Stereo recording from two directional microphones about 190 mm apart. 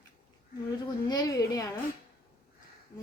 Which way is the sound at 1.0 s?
20° left (ahead or behind).